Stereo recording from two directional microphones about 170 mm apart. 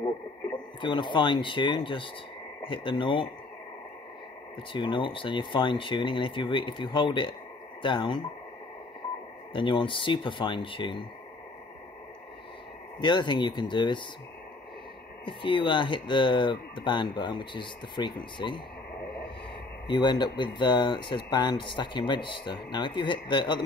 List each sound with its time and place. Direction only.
0.7 s speech: 30° left (ahead or behind)
4.7 s speech: 30° left (ahead or behind)
9.5 s speech: 30° left (ahead or behind)
13.0 s speech: 25° left (ahead or behind)
15.2 s speech: 30° left (ahead or behind)
19.9 s speech: 25° left (ahead or behind)